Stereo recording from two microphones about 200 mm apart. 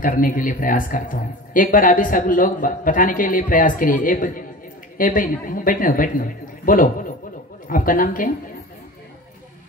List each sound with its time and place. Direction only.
0.0 s speech: 45° left (ahead or behind)